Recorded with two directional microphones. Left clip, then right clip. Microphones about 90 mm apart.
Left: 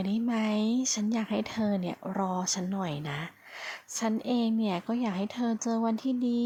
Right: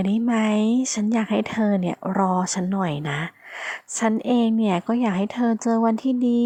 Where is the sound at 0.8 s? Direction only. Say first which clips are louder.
Right 7 dB; 50° right (ahead or behind).